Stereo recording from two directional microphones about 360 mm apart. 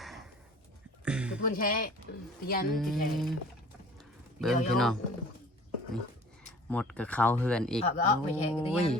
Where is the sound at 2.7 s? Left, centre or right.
Centre.